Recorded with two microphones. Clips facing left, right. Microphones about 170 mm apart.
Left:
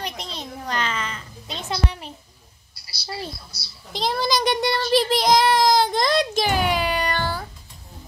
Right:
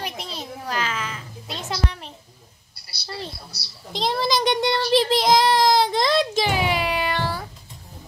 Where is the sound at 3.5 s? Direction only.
70° right (ahead or behind).